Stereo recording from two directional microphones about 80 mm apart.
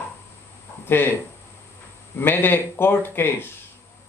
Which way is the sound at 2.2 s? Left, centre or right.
Left.